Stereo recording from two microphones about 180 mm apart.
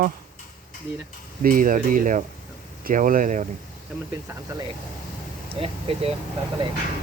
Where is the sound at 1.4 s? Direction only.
50° right (ahead or behind).